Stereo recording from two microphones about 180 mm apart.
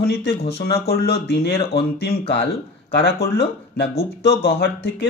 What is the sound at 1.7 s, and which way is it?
Speech, 65° left (ahead or behind).